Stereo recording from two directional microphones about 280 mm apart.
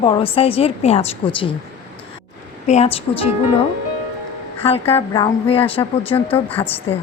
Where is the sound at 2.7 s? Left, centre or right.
Left.